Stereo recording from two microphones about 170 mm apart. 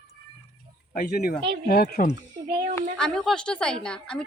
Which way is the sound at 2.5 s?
65° right (ahead or behind).